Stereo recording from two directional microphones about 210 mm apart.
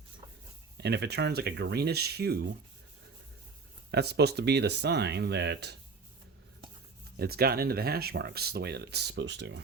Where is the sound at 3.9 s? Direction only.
50° right (ahead or behind).